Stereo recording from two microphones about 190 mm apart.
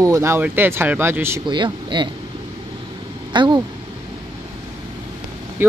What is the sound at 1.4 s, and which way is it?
Speech, 25° right (ahead or behind).